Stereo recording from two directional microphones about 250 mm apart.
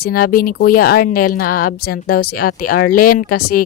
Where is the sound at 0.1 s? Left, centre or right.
Left.